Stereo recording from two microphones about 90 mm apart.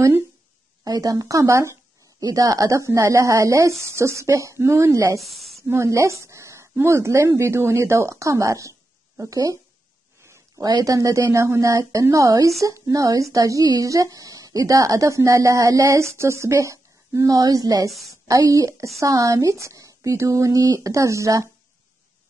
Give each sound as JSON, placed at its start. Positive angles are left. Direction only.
{"t": 0.8, "sound": "a woman's voice", "side_deg": -40}
{"t": 5.2, "sound": "a woman's voice", "side_deg": 0}
{"t": 5.7, "sound": "a woman's voice", "side_deg": -35}
{"t": 10.8, "sound": "a woman's voice", "side_deg": -40}